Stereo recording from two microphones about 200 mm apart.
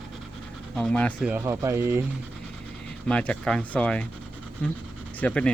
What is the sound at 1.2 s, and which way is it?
Speech, 10° right (ahead or behind).